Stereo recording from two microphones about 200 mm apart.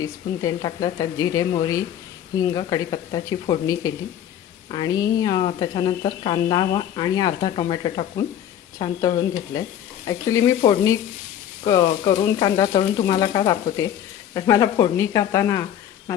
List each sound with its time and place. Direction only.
0.0 s a woman's voice: 15° left (ahead or behind)